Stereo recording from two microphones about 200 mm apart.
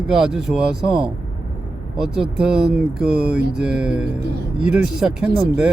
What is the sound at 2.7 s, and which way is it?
Speech, 5° right (ahead or behind).